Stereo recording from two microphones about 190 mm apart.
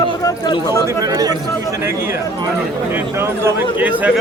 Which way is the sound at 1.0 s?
20° right (ahead or behind).